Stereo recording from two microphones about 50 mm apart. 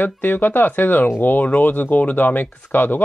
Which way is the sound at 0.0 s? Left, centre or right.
Left.